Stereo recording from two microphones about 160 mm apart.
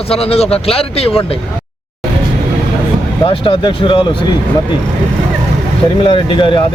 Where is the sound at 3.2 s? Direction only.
35° left (ahead or behind).